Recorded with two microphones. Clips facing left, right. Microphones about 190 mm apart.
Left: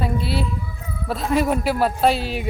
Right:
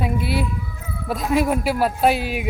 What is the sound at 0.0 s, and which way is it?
A man's voice, 15° right (ahead or behind).